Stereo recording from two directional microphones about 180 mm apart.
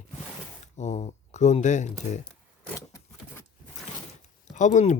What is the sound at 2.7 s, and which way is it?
Keys jangling, 15° left (ahead or behind).